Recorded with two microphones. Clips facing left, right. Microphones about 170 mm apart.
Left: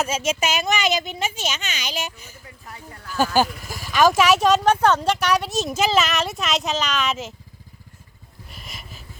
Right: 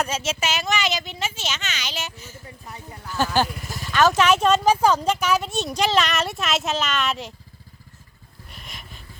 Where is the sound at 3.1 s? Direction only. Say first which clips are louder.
Left 2 dB; 10° left (ahead or behind).